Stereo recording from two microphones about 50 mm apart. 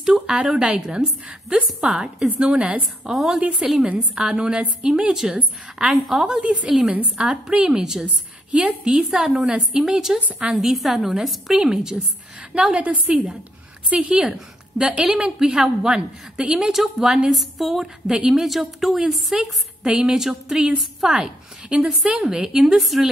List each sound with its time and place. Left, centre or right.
0.0 s a woman's voice: centre
3.1 s a woman's voice: centre
5.8 s a woman's voice: centre
6.4 s a woman's voice: right; by 11.5 s centre
11.5 s a woman's voice: centre
12.7 s a woman's voice: right; by 17.8 s centre
18.0 s a woman's voice: centre
18.4 s a woman's voice: centre
22.8 s a woman's voice: centre